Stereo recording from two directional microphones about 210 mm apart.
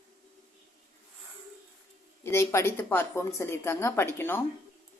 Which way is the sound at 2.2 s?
10° left (ahead or behind).